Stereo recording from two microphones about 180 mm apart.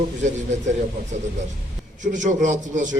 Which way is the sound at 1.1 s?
40° right (ahead or behind).